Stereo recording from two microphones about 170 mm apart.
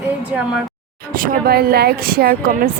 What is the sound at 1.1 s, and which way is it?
Speech, 60° right (ahead or behind).